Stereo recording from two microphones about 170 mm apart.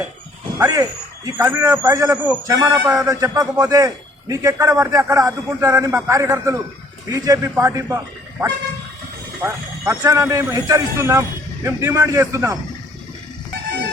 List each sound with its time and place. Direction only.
0.6 s a man's voice: 20° right (ahead or behind)